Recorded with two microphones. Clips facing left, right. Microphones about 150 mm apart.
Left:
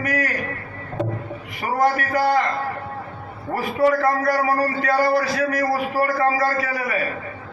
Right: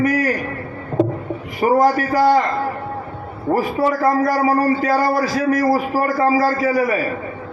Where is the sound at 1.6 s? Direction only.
35° right (ahead or behind).